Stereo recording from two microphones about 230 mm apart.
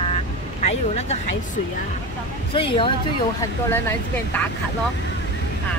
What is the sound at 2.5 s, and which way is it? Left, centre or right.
Speech, left.